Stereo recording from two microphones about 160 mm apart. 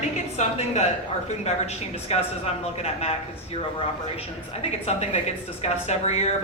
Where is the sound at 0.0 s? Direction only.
45° left (ahead or behind).